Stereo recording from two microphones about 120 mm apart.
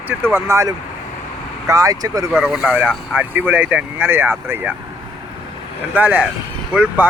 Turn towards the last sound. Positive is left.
turn(degrees=-15)  # may be behind; listen again after turning